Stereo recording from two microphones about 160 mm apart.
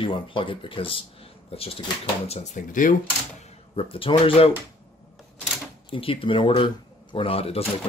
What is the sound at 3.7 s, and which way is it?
Speech, 35° left (ahead or behind).